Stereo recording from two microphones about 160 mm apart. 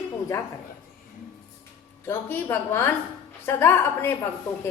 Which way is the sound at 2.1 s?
15° left (ahead or behind).